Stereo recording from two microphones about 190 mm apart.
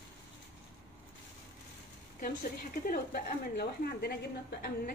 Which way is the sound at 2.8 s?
50° left (ahead or behind).